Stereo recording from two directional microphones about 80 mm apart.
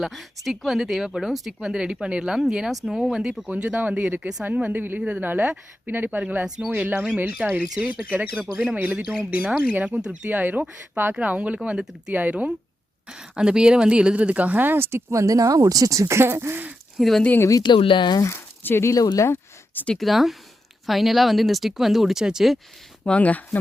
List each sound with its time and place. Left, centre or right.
0.0 s speech: centre
6.7 s speech: right
17.0 s speech: centre
17.6 s speech: left
18.2 s speech: left
18.9 s speech: left
19.3 s a sound: left
19.9 s speech: centre
23.0 s speech: centre